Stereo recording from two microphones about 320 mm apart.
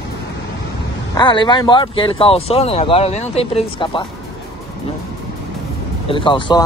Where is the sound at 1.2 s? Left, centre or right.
Centre.